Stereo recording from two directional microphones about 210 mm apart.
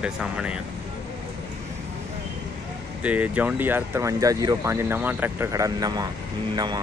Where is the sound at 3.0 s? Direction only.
5° right (ahead or behind).